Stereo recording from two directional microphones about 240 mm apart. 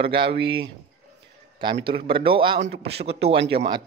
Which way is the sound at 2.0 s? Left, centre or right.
Right.